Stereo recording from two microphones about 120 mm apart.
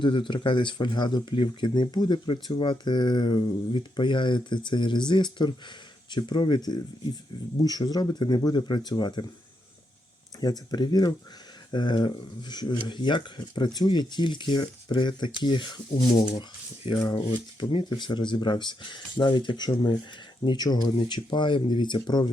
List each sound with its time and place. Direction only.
0.0 s speech: 40° left (ahead or behind)
10.4 s speech: 35° left (ahead or behind)
16.9 s speech: 35° left (ahead or behind)